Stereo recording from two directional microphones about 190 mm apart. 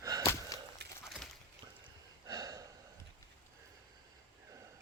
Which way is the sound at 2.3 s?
20° right (ahead or behind).